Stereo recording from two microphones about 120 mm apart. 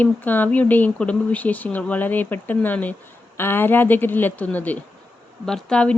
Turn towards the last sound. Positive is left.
turn(degrees=5)  # may be behind; listen again after turning